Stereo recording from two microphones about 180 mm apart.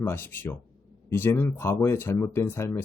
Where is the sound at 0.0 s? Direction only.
15° left (ahead or behind).